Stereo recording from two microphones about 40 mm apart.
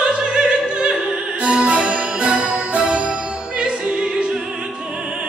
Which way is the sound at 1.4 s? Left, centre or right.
Right.